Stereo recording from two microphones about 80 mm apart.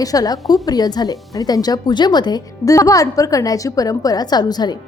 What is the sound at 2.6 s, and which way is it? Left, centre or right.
A woman's voice, left.